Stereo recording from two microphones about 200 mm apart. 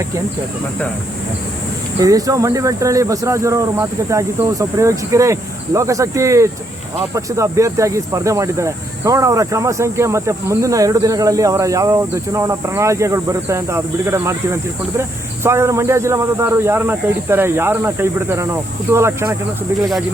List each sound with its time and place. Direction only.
2.0 s speech: 15° right (ahead or behind)
19.8 s speech: centre (ahead or behind)